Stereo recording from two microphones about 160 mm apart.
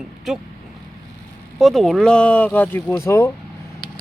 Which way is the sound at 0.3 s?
Centre (ahead or behind).